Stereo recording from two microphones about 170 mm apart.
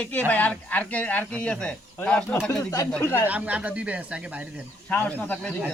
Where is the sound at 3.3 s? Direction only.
5° right (ahead or behind).